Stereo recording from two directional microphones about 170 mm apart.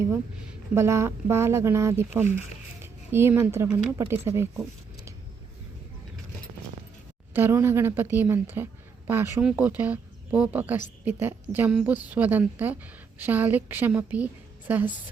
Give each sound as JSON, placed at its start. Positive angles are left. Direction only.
{"t": 0.7, "sound": "a woman's voice", "side_deg": -15}
{"t": 7.3, "sound": "a woman's voice", "side_deg": -15}